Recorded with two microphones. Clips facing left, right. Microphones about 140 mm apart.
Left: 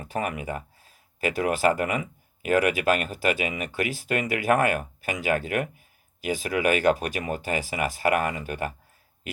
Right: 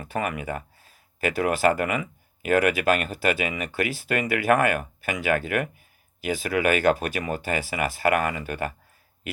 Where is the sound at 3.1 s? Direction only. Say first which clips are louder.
Right 1 dB; 40° right (ahead or behind).